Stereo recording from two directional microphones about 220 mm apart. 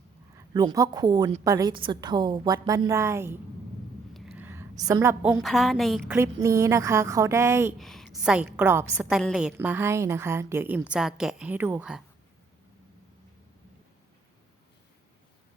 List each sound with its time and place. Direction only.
0.3 s a woman's voice: 20° right (ahead or behind)
4.1 s a sound: centre (ahead or behind)
4.8 s a woman's voice: 15° right (ahead or behind)
5.4 s a woman's voice: centre (ahead or behind)
6.1 s a woman's voice: 10° right (ahead or behind)
7.8 s a sound: centre (ahead or behind)
8.2 s a woman's voice: 5° right (ahead or behind)